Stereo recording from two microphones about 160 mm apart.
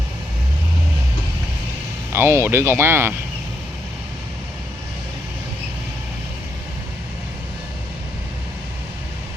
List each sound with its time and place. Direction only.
2.1 s speech: 15° right (ahead or behind)